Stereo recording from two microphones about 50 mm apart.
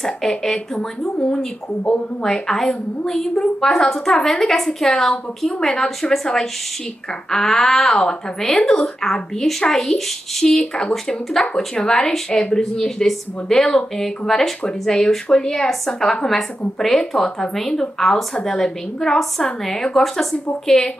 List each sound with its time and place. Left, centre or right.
0.0 s speech: centre